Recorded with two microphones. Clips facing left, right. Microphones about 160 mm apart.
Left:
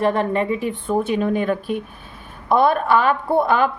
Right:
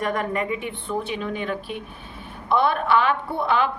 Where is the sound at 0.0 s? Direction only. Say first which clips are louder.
Left 6 dB; 30° left (ahead or behind).